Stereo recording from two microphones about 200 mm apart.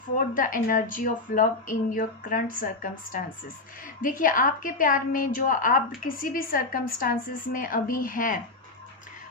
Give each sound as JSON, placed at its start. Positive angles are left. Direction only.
{"t": 0.2, "sound": "a woman's voice", "side_deg": 45}